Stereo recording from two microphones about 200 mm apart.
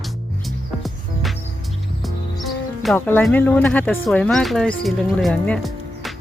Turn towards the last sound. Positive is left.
turn(degrees=0)  # may be behind; listen again after turning